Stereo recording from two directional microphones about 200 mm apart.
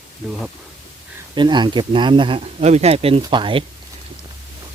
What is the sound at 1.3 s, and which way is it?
Speech, 20° right (ahead or behind).